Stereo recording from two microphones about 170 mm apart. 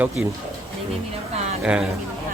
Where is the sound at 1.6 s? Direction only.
5° right (ahead or behind).